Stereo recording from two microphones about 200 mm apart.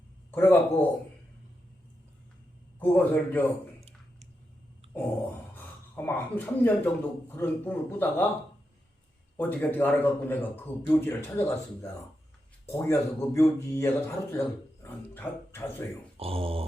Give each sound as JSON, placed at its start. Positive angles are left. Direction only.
{"t": 0.3, "sound": "speech", "side_deg": 10}
{"t": 2.7, "sound": "speech", "side_deg": 10}
{"t": 3.8, "sound": "a sound", "side_deg": -30}
{"t": 5.5, "sound": "speech", "side_deg": 10}
{"t": 9.4, "sound": "speech", "side_deg": 10}
{"t": 16.1, "sound": "speech", "side_deg": -30}